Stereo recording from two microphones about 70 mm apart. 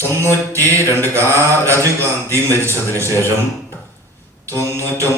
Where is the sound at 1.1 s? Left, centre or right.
Right.